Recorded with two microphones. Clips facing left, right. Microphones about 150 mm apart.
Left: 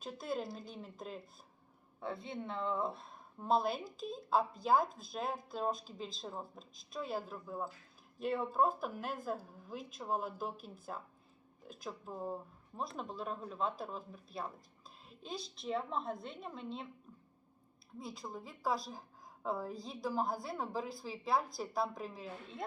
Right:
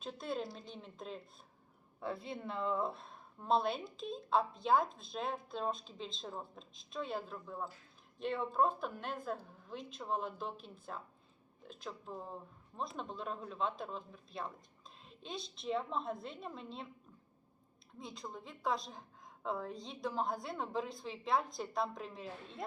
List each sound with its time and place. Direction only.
0.0 s a woman's voice: 5° left (ahead or behind)
18.0 s a woman's voice: 5° left (ahead or behind)